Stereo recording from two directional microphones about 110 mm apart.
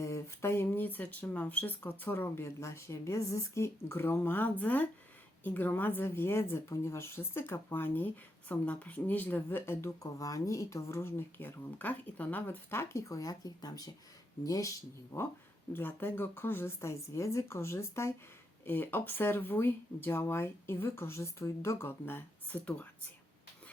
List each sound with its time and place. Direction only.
0.0 s speech: 25° left (ahead or behind)
15.7 s speech: 20° left (ahead or behind)